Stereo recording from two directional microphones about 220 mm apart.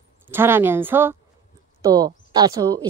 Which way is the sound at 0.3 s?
10° right (ahead or behind).